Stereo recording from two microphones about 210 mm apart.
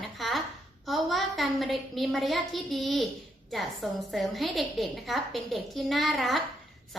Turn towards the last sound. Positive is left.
turn(degrees=0)  # may be behind; listen again after turning